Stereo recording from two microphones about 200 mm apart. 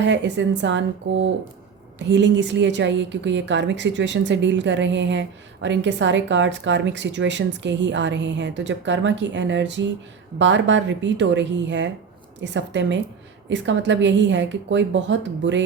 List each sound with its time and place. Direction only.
0.0 s a woman's voice: 65° right (ahead or behind)
2.0 s a woman's voice: 60° right (ahead or behind)